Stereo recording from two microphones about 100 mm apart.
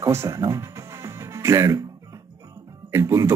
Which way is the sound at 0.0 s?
30° right (ahead or behind).